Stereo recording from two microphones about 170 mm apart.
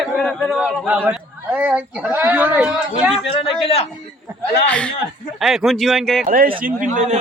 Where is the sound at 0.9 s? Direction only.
10° right (ahead or behind).